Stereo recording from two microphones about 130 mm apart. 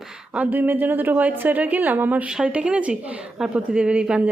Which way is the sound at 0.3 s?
15° right (ahead or behind).